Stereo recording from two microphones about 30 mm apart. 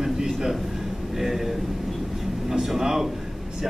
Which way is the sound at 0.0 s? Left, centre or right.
Centre.